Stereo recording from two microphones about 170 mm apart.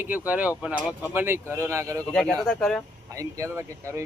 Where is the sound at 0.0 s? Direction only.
10° right (ahead or behind).